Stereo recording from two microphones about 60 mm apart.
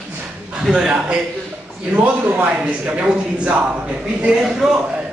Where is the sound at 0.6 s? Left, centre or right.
Centre.